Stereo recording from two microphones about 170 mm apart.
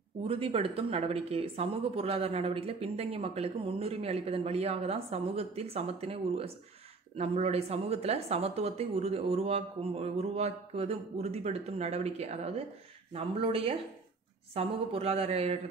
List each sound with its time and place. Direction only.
0.3 s speech: 35° right (ahead or behind)